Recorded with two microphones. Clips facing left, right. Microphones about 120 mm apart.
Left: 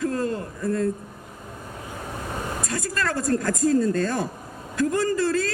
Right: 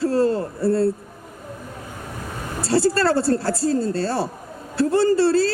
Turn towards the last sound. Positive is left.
turn(degrees=-30)  # may be behind; listen again after turning